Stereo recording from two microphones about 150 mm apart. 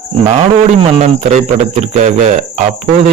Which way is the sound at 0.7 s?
50° right (ahead or behind).